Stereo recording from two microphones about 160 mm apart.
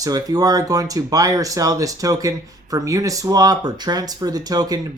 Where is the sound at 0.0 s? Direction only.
25° right (ahead or behind).